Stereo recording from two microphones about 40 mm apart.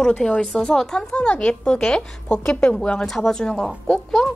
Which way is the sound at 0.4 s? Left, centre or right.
Centre.